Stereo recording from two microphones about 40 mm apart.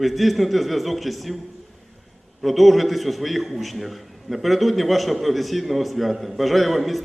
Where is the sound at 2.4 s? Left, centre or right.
Centre.